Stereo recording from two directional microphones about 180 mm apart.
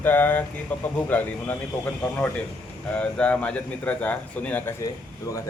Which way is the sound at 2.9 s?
5° left (ahead or behind).